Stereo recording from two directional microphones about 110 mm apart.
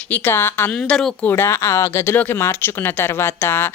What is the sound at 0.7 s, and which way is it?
Speech, 5° left (ahead or behind).